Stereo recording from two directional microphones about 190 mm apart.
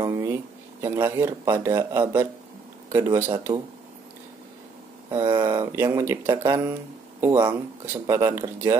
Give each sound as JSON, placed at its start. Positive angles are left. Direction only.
{"t": 0.0, "sound": "speech", "side_deg": -15}
{"t": 3.5, "sound": "speech", "side_deg": -25}
{"t": 5.3, "sound": "speech", "side_deg": -20}